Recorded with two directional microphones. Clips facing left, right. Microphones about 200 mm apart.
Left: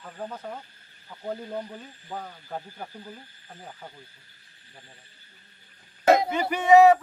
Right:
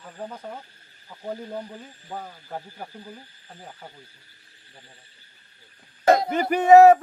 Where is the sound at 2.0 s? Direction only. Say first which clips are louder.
Right 1 dB; 10° right (ahead or behind).